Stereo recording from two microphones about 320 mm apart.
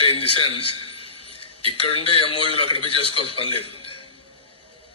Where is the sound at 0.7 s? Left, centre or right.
Left.